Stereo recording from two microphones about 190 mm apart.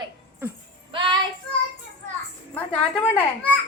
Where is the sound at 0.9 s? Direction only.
25° right (ahead or behind).